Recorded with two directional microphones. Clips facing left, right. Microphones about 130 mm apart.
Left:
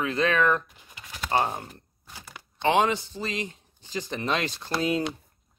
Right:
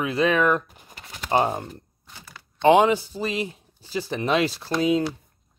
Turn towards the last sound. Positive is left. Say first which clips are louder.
# right 5 dB
turn(degrees=0)  # may be behind; listen again after turning